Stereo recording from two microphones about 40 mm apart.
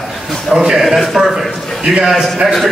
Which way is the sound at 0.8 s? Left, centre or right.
Centre.